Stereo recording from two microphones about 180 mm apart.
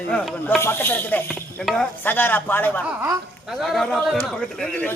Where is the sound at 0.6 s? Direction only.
10° left (ahead or behind).